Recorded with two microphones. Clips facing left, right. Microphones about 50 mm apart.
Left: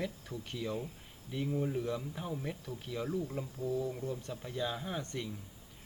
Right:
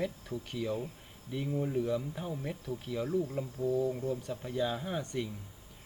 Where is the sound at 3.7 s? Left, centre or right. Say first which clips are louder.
Right 5 dB; right.